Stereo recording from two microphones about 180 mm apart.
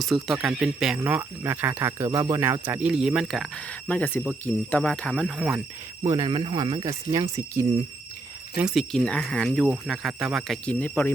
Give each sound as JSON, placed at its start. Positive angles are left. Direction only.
{"t": 0.0, "sound": "speech", "side_deg": 0}
{"t": 6.1, "sound": "speech", "side_deg": -20}
{"t": 8.5, "sound": "speech", "side_deg": 0}